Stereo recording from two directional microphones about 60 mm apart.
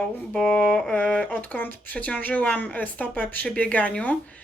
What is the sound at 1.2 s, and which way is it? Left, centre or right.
Speech, left.